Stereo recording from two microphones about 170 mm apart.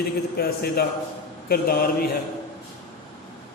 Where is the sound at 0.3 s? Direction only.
65° left (ahead or behind).